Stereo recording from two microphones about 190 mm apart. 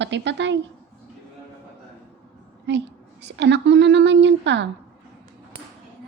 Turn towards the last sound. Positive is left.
turn(degrees=-70)  # may be behind; listen again after turning